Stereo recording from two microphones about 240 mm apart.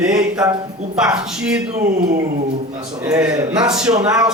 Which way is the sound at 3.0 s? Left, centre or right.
Centre.